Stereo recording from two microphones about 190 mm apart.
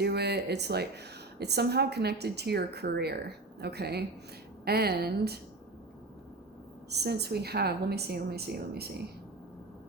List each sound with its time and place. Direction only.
0.0 s a woman's voice: 60° right (ahead or behind)
6.9 s a woman's voice: 60° right (ahead or behind)